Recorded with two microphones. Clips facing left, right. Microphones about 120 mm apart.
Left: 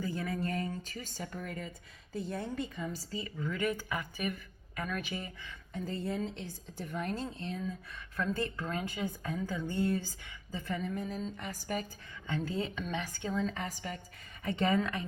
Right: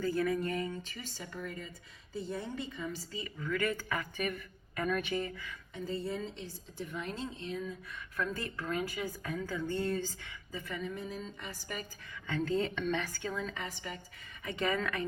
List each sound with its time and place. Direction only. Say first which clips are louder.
0.0 s a sound: right 5 dB; 20° left (ahead or behind)
0.3 s speech: right 2 dB; 35° left (ahead or behind)
3.6 s speech: left 2 dB; 15° left (ahead or behind)
4.3 s speech: even; centre (ahead or behind)
5.7 s a woman's voice: left 1 dB; 55° left (ahead or behind); by 10.3 s 10° left (ahead or behind)
10.5 s speech: left 3 dB; 40° left (ahead or behind)
12.3 s speech: right 3 dB; 5° left (ahead or behind)
12.9 s speech: right 2 dB; 20° left (ahead or behind)
13.3 s speech: left 4 dB; 40° left (ahead or behind)
14.4 s a woman's voice: left 3 dB; 30° left (ahead or behind)
14.8 s a woman's voice: left 2 dB; 20° left (ahead or behind)